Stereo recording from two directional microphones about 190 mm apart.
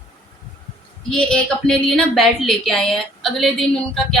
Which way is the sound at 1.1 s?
5° left (ahead or behind).